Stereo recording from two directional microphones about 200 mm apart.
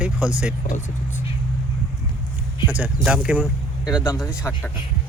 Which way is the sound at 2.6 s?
10° right (ahead or behind).